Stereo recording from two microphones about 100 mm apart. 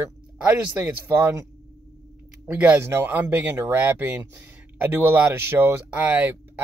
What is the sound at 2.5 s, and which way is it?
Speech, 15° right (ahead or behind).